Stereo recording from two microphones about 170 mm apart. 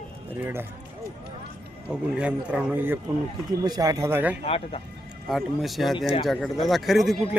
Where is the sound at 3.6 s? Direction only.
20° right (ahead or behind).